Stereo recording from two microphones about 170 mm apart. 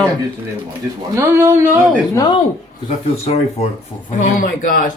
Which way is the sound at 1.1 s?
15° right (ahead or behind).